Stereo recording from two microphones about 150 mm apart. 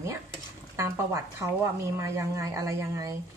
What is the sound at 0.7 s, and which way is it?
Speech, 20° right (ahead or behind).